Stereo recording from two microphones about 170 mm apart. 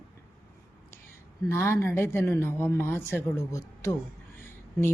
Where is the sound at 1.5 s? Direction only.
15° left (ahead or behind).